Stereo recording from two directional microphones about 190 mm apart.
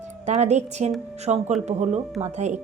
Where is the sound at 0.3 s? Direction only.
35° right (ahead or behind).